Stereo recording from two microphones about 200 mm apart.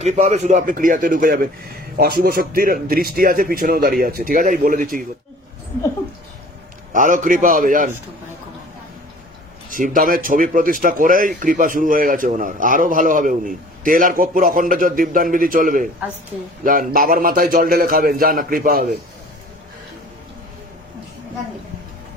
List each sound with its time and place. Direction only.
0.0 s a man's voice: 35° right (ahead or behind)
6.9 s a man's voice: 40° right (ahead or behind)
9.6 s speech: 40° right (ahead or behind)